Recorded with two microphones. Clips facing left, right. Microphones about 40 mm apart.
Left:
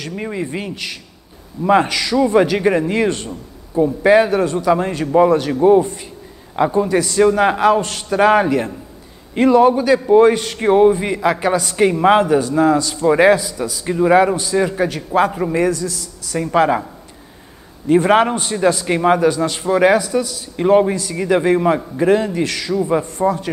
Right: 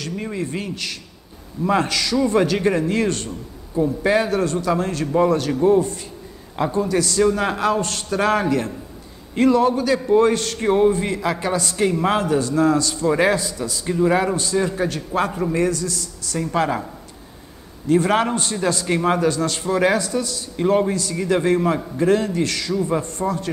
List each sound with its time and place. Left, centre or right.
0.0 s a man's voice: centre
11.7 s a man's voice: left; by 13.7 s centre
13.8 s a man's voice: centre
17.8 s a man's voice: centre